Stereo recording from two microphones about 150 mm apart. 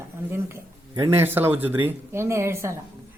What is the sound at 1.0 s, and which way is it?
A man's voice, 15° right (ahead or behind).